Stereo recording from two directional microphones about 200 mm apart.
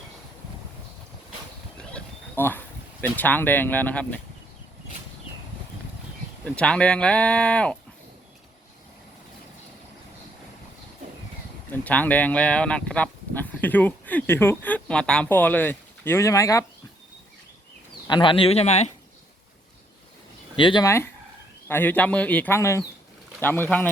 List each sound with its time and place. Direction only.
1.8 s a sound: 5° left (ahead or behind)
6.4 s speech: 5° left (ahead or behind)
11.7 s speech: 10° left (ahead or behind)
18.1 s speech: 25° left (ahead or behind)
20.6 s speech: 25° left (ahead or behind)